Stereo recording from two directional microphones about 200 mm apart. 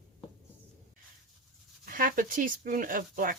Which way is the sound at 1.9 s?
45° right (ahead or behind).